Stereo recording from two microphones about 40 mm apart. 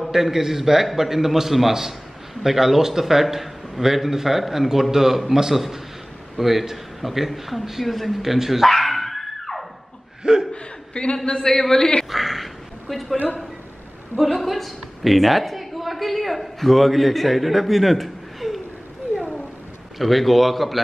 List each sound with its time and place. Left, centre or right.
0.1 s a man's voice: centre
8.6 s dog: centre
10.5 s chuckle: left
11.2 s a man's voice: centre
12.1 s a sound: centre
14.1 s a woman's voice: centre
20.0 s a man's voice: centre